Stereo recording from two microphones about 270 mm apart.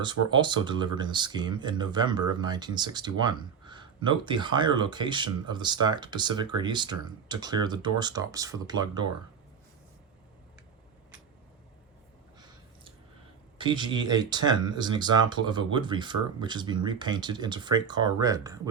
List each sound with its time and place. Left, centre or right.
0.3 s speech: centre
13.6 s speech: centre